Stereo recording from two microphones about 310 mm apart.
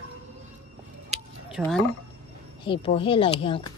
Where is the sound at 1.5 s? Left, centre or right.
Centre.